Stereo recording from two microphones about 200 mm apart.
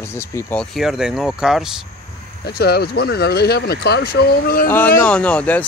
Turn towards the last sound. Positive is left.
turn(degrees=5)  # may be behind; listen again after turning